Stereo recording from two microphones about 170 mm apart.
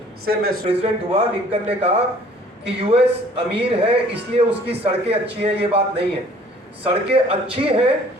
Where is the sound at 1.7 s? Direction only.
40° right (ahead or behind).